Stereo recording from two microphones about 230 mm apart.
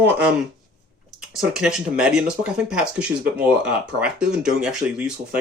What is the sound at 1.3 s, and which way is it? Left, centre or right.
Speech, centre.